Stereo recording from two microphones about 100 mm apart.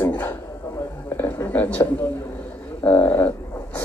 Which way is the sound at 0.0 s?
20° left (ahead or behind).